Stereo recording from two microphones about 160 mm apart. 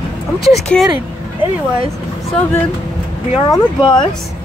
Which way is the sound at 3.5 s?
25° left (ahead or behind).